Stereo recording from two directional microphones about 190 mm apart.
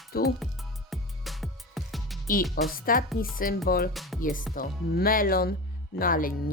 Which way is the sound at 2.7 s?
50° left (ahead or behind).